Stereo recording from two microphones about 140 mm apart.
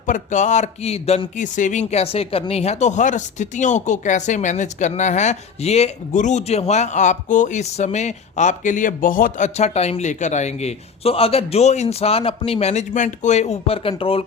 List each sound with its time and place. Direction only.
0.0 s speech: 65° left (ahead or behind)
9.6 s a man's voice: 50° left (ahead or behind)